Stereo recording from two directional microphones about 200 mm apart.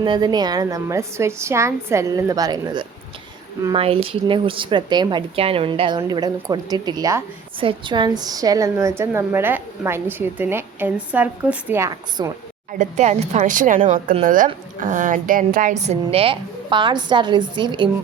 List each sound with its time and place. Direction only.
0.0 s a woman's voice: 20° right (ahead or behind)
12.8 s a woman's voice: 35° right (ahead or behind)